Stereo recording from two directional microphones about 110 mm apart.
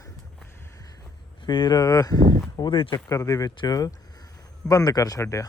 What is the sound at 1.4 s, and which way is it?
Speech, 40° left (ahead or behind).